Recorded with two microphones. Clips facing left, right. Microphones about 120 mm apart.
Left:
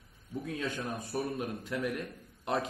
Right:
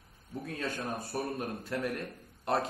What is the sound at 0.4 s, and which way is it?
A man's voice, 45° right (ahead or behind).